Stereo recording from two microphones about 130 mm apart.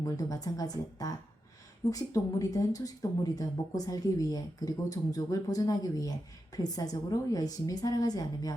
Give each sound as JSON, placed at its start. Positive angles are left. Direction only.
{"t": 0.0, "sound": "speech", "side_deg": 30}